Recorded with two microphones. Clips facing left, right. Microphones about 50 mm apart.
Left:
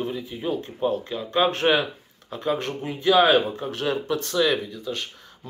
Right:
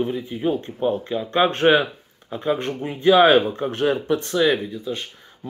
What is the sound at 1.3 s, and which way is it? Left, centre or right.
Speech, right.